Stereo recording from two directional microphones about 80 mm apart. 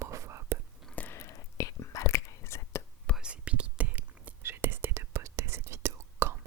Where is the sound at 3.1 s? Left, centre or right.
Centre.